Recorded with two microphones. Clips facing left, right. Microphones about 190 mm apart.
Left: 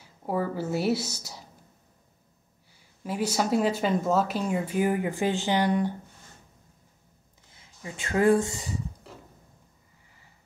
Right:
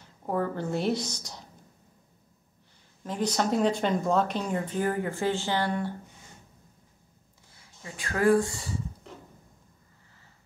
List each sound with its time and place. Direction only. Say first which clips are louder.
0.0 s speech: even; 5° left (ahead or behind)
3.0 s speech: left 1 dB; 5° left (ahead or behind)
7.5 s speech: left 3 dB; 20° left (ahead or behind)